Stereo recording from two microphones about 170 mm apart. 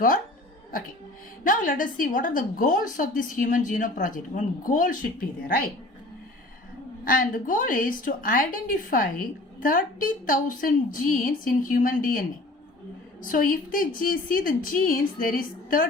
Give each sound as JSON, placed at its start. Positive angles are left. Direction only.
{"t": 1.5, "sound": "a woman's voice", "side_deg": 55}
{"t": 7.0, "sound": "a woman's voice", "side_deg": 55}
{"t": 13.2, "sound": "a woman's voice", "side_deg": 55}